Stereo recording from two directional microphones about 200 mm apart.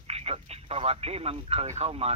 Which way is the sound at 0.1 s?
30° right (ahead or behind).